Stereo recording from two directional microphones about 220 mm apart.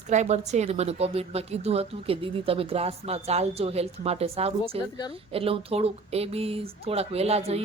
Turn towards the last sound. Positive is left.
turn(degrees=-30)  # may be behind; listen again after turning